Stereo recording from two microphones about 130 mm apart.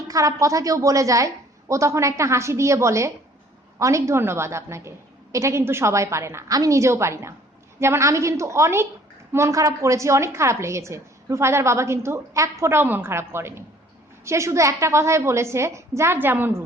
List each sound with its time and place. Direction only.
0.1 s a woman's voice: 25° right (ahead or behind)